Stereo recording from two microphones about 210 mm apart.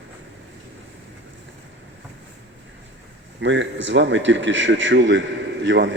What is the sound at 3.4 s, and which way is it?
A man's voice, 60° right (ahead or behind).